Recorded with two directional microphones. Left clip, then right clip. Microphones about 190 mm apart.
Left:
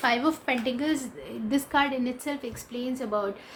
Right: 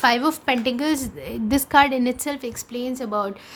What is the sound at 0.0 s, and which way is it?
A woman's voice, 50° right (ahead or behind).